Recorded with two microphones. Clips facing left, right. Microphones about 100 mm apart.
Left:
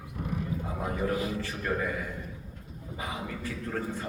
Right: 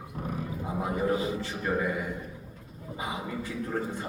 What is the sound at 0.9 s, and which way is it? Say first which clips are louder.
Music: right 2 dB; 20° right (ahead or behind).